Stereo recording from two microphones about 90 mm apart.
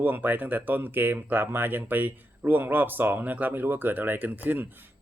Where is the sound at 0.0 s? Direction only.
20° right (ahead or behind).